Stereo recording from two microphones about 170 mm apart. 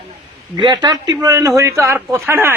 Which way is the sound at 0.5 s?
25° right (ahead or behind).